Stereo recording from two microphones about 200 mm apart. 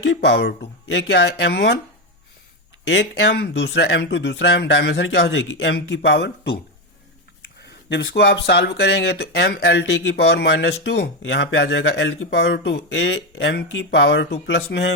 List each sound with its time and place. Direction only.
0.0 s speech: 65° left (ahead or behind)
2.8 s speech: 60° left (ahead or behind)